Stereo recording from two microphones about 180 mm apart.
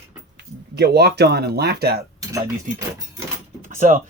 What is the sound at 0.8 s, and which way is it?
Speech, 65° right (ahead or behind).